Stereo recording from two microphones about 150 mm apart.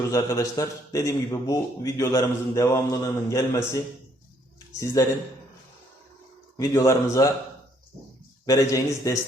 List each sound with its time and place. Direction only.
0.1 s a man's voice: 20° left (ahead or behind)
5.0 s a man's voice: 25° left (ahead or behind)
6.6 s a man's voice: 20° left (ahead or behind)
8.4 s a man's voice: 20° left (ahead or behind)